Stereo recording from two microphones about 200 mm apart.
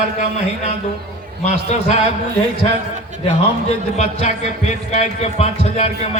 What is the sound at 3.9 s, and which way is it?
A man's voice, 35° left (ahead or behind).